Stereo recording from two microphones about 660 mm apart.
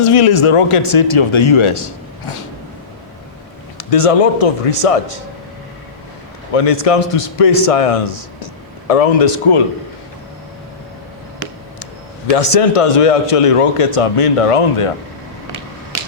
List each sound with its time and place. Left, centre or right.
0.0 s speech: left
3.8 s speech: left
6.5 s speech: left
12.3 s speech: left